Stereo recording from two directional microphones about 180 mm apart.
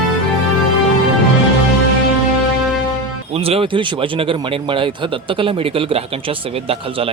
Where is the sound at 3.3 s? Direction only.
30° right (ahead or behind).